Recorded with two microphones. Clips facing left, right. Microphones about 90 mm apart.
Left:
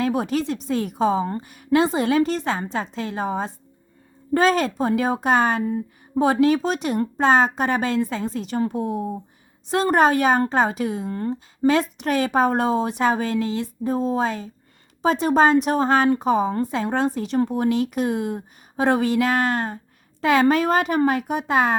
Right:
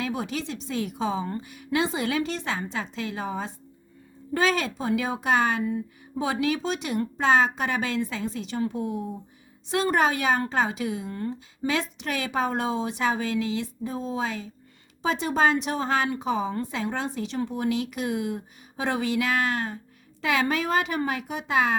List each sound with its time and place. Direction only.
0.0 s a woman's voice: 45° left (ahead or behind)